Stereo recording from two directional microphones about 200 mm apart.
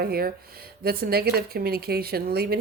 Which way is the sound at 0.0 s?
50° right (ahead or behind).